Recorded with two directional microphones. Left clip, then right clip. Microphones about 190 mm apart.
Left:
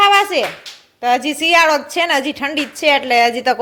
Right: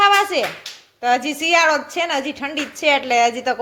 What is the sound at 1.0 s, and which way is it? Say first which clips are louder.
A woman's voice: left 3 dB; 10° left (ahead or behind).